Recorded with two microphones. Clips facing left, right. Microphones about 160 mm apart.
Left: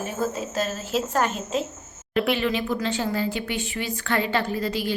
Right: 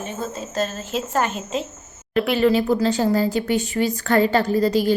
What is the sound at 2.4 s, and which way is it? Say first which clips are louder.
A woman's voice: right 8 dB; 40° right (ahead or behind).